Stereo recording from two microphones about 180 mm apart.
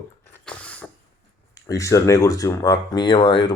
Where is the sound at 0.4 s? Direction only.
5° left (ahead or behind).